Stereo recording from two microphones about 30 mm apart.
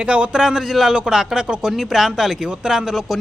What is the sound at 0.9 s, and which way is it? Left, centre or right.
Speech, right.